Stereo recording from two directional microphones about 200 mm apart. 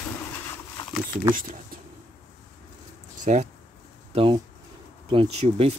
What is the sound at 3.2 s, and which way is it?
Speech, 35° right (ahead or behind).